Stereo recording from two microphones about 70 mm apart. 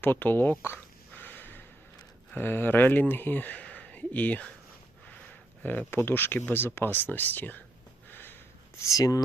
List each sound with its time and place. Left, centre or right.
0.0 s speech: left
0.6 s a sound: left
2.3 s speech: left
5.9 s speech: left
8.1 s sniff: left
8.8 s speech: left